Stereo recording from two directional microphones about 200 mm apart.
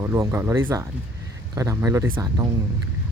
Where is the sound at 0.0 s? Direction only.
15° right (ahead or behind).